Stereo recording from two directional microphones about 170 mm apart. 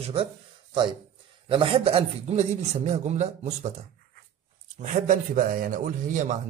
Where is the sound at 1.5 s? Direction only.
35° right (ahead or behind).